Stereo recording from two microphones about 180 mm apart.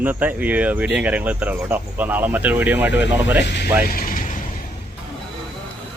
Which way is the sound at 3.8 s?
50° left (ahead or behind).